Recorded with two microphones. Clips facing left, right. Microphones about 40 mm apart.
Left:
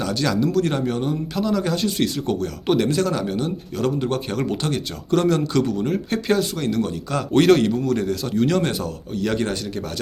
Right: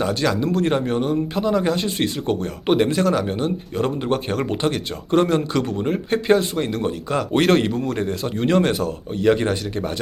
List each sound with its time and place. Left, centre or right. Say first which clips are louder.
0.0 s speech: right 1 dB; centre